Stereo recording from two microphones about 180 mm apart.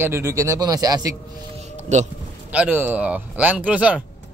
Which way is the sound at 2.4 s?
10° right (ahead or behind).